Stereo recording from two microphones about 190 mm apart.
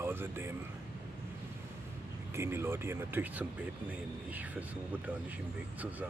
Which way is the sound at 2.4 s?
10° right (ahead or behind).